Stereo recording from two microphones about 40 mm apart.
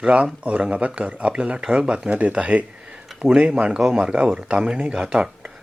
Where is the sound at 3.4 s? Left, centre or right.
Right.